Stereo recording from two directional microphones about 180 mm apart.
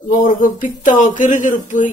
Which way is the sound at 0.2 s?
50° left (ahead or behind).